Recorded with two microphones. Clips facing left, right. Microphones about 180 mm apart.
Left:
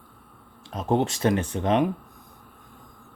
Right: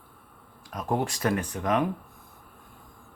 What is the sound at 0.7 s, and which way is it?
Speech, 25° left (ahead or behind).